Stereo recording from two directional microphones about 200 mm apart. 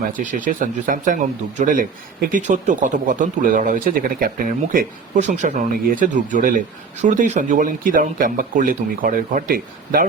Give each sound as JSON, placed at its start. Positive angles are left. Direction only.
{"t": 0.2, "sound": "speech", "side_deg": -40}